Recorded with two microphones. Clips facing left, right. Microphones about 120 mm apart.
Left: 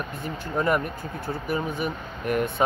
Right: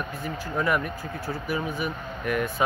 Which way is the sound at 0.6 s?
40° left (ahead or behind).